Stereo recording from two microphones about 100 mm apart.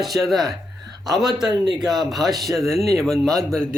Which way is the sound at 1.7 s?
5° right (ahead or behind).